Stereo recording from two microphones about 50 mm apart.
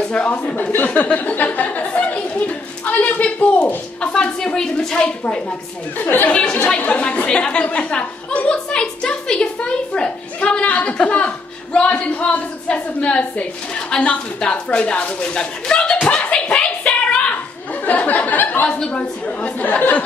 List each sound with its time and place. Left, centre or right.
0.0 s speech: centre
0.3 s a woman's voice: left
1.3 s a sound: left
6.0 s a woman's voice: left